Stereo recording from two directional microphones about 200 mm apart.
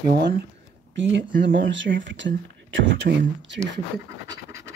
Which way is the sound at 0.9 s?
65° right (ahead or behind).